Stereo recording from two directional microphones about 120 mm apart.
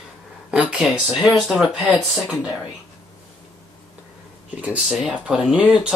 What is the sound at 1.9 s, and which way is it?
Speech, 5° right (ahead or behind).